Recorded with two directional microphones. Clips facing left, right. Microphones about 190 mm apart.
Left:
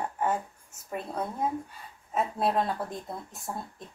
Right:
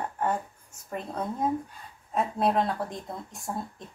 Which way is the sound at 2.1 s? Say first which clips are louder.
Right 2 dB; centre (ahead or behind).